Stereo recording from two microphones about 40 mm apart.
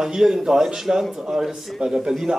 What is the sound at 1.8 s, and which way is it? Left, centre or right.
Speech, centre.